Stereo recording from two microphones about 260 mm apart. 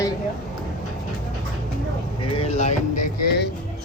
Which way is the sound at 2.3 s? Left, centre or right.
Left.